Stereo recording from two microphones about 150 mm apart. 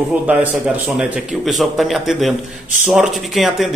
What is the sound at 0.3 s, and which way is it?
A man's voice, 10° right (ahead or behind).